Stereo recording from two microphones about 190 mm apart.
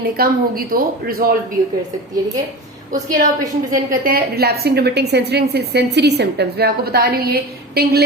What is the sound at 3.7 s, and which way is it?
A woman's voice, 45° right (ahead or behind).